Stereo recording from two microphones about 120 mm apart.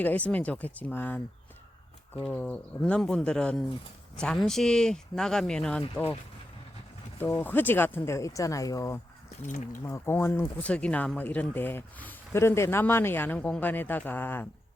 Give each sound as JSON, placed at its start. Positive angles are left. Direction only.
{"t": 0.0, "sound": "speech", "side_deg": 15}
{"t": 2.2, "sound": "speech", "side_deg": 10}
{"t": 7.2, "sound": "speech", "side_deg": 20}
{"t": 9.4, "sound": "speech", "side_deg": 70}
{"t": 9.8, "sound": "speech", "side_deg": 20}
{"t": 10.7, "sound": "speech", "side_deg": 10}